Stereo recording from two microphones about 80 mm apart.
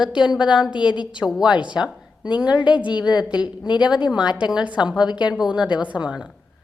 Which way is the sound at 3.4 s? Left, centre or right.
Left.